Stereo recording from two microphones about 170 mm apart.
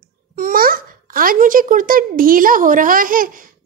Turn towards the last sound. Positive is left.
turn(degrees=-55)  # may be behind; listen again after turning